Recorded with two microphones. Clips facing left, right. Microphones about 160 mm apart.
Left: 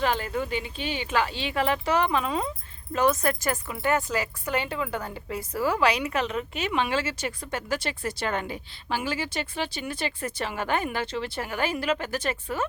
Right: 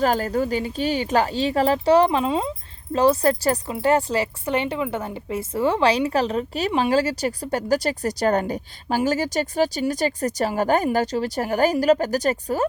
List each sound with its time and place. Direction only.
0.0 s a woman's voice: 40° right (ahead or behind)